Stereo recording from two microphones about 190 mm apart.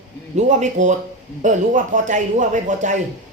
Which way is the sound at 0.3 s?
40° right (ahead or behind).